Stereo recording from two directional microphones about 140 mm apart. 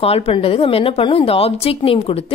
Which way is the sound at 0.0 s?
45° left (ahead or behind).